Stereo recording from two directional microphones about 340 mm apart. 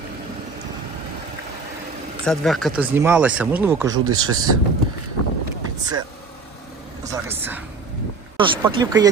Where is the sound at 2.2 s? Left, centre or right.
Centre.